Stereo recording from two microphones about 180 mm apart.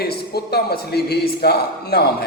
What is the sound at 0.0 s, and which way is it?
A man's voice, 60° left (ahead or behind).